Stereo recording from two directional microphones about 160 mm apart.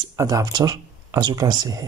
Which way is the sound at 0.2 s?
20° right (ahead or behind).